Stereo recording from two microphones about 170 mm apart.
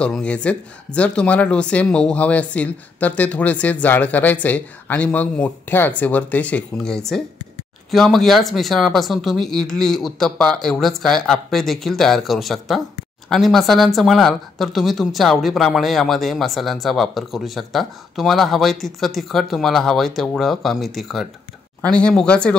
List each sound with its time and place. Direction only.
0.0 s speech: 5° left (ahead or behind)